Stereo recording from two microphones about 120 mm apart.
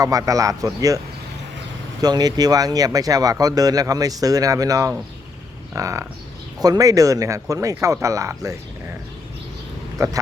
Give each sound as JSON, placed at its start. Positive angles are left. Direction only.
{"t": 0.0, "sound": "speech", "side_deg": -30}